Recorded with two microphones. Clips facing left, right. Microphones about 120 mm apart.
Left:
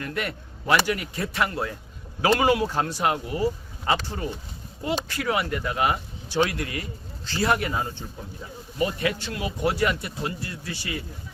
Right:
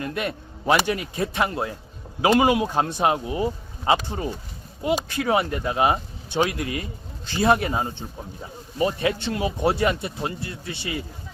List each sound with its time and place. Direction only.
0.0 s speech: 20° right (ahead or behind)